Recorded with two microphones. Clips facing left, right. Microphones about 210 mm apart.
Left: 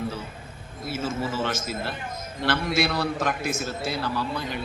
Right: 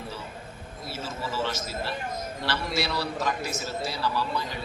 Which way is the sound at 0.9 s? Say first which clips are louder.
Left 6 dB; 50° left (ahead or behind).